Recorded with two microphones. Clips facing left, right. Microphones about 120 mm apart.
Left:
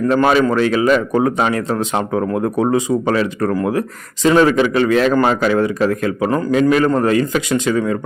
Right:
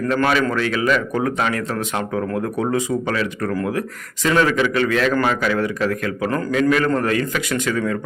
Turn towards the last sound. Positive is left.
turn(degrees=25)  # may be behind; listen again after turning